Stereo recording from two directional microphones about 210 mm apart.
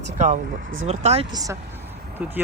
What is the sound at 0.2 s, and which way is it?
Speech, 40° right (ahead or behind).